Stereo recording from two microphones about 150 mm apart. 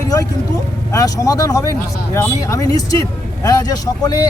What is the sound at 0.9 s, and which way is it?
Speech, 25° left (ahead or behind).